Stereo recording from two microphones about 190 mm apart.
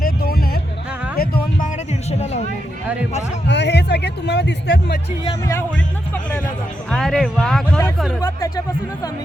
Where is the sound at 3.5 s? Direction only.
65° left (ahead or behind).